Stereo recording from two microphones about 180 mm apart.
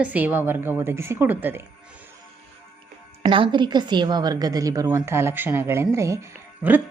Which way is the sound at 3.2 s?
30° right (ahead or behind).